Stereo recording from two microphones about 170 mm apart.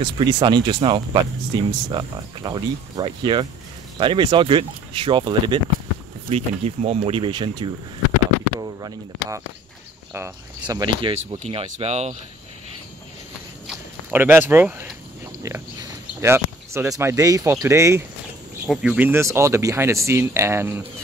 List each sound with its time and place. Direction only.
0.0 s speech: 25° right (ahead or behind)
11.3 s speech: 40° right (ahead or behind)
14.1 s speech: 10° right (ahead or behind)
16.2 s speech: 15° right (ahead or behind)
18.7 s speech: 5° right (ahead or behind)